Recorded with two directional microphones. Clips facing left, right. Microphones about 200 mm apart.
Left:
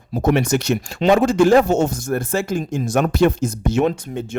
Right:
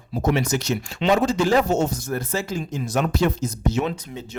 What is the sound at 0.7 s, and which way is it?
Speech, 45° left (ahead or behind).